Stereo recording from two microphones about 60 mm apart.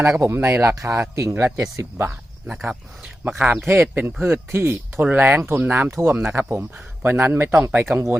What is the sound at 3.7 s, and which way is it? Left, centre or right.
Speech, right.